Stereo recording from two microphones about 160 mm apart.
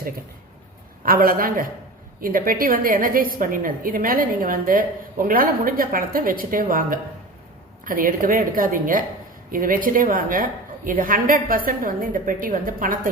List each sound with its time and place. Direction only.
1.0 s a woman's voice: 65° right (ahead or behind)